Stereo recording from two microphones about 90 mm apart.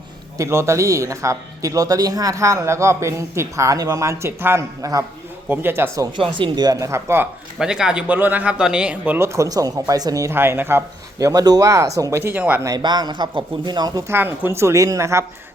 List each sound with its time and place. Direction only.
0.3 s speech: 30° right (ahead or behind)
4.8 s speech: 40° right (ahead or behind)
5.5 s a man's voice: 25° right (ahead or behind)
6.1 s speech: 65° right (ahead or behind)
6.7 s speech: 35° right (ahead or behind)
7.6 s speech: 10° right (ahead or behind)
9.1 s speech: 30° right (ahead or behind)
10.3 s a man's voice: 25° right (ahead or behind)
11.3 s speech: 45° right (ahead or behind)
12.2 s a man's voice: 20° right (ahead or behind)
12.6 s speech: 50° right (ahead or behind)
14.1 s speech: 25° right (ahead or behind)